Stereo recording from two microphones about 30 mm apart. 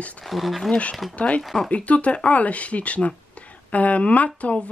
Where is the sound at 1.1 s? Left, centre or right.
Left.